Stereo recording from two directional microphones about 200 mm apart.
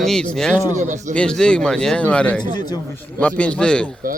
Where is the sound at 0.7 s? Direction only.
35° right (ahead or behind).